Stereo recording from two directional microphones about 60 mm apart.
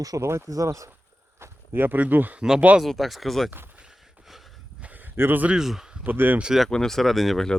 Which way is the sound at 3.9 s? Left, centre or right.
Centre.